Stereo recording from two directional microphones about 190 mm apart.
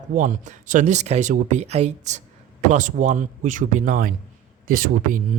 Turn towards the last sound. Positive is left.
turn(degrees=-45)  # may be behind; listen again after turning